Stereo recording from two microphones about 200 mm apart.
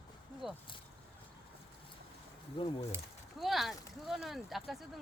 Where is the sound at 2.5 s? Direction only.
30° left (ahead or behind).